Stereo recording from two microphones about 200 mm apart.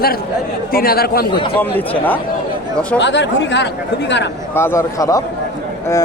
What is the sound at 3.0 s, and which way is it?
Speech, 60° left (ahead or behind).